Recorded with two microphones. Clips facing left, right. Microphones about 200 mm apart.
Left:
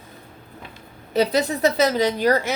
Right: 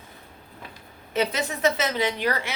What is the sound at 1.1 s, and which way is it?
Speech, 35° left (ahead or behind).